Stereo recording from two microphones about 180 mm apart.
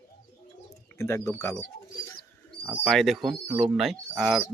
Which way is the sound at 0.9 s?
15° left (ahead or behind).